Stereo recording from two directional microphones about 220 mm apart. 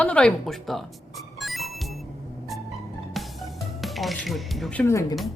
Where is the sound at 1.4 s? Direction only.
Centre (ahead or behind).